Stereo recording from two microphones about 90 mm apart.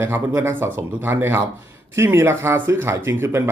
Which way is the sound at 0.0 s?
25° right (ahead or behind).